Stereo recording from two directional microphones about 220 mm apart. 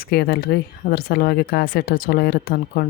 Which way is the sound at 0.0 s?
45° left (ahead or behind).